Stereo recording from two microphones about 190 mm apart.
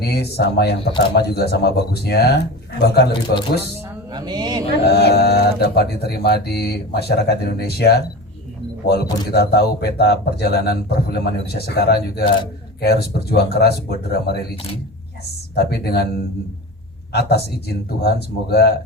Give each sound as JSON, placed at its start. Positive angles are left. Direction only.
{"t": 0.0, "sound": "speech", "side_deg": 60}
{"t": 4.1, "sound": "speech", "side_deg": -20}
{"t": 4.9, "sound": "speech", "side_deg": 60}
{"t": 14.5, "sound": "speech", "side_deg": 30}
{"t": 15.5, "sound": "speech", "side_deg": 60}
{"t": 17.1, "sound": "speech", "side_deg": 60}